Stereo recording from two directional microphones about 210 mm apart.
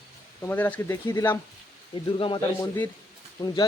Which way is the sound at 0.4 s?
10° left (ahead or behind).